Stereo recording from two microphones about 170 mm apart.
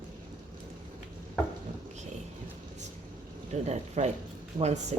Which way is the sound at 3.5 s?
40° right (ahead or behind).